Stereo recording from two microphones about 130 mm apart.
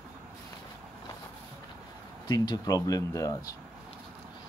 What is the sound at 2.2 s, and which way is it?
Speech, 35° left (ahead or behind).